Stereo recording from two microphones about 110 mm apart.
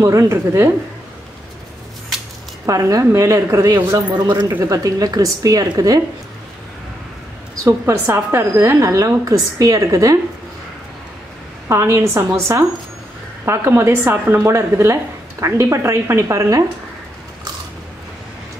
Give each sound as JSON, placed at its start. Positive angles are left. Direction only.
{"t": 0.0, "sound": "a woman's voice", "side_deg": -25}
{"t": 2.6, "sound": "a woman's voice", "side_deg": -30}
{"t": 7.5, "sound": "a woman's voice", "side_deg": -25}
{"t": 11.7, "sound": "a woman's voice", "side_deg": -25}
{"t": 13.5, "sound": "a woman's voice", "side_deg": -20}